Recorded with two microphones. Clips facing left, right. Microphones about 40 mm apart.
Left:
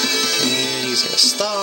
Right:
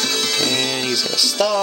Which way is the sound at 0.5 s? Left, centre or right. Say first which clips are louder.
Right 1 dB; right.